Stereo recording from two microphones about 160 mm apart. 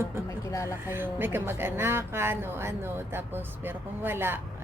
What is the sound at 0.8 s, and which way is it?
A woman's voice, 15° right (ahead or behind).